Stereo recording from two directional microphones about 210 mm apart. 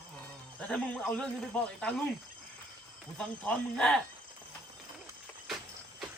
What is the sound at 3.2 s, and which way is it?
Speech, 5° left (ahead or behind).